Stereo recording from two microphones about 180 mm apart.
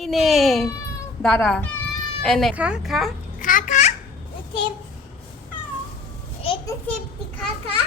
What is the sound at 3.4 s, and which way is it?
Speech, 50° left (ahead or behind).